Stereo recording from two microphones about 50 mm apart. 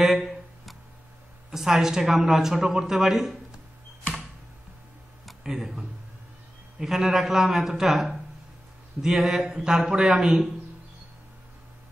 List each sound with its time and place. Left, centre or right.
0.0 s a sound: centre
1.5 s a woman's voice: centre
5.4 s a man's voice: centre